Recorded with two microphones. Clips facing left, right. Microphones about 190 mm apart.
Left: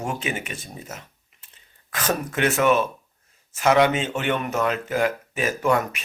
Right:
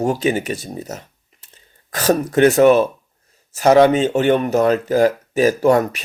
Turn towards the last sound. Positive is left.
turn(degrees=-35)  # may be behind; listen again after turning